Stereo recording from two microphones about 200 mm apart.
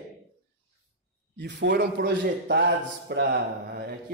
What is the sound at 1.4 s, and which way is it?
Speech, 60° right (ahead or behind).